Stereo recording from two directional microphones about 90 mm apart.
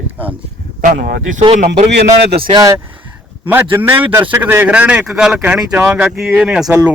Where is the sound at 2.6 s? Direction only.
35° right (ahead or behind).